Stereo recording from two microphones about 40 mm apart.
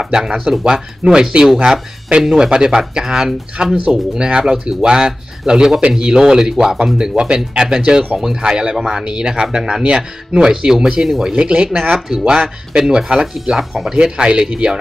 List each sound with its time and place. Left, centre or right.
0.0 s speech: centre
3.6 s speech: right
3.9 s speech: centre
11.3 s speech: right
11.9 s speech: centre
12.3 s speech: centre
13.3 s speech: centre
14.0 s speech: right